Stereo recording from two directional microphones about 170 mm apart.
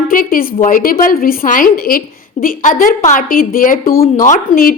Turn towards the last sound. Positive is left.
turn(degrees=55)  # may be behind; listen again after turning